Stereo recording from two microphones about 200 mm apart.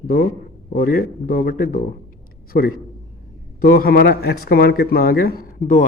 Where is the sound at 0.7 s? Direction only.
50° left (ahead or behind).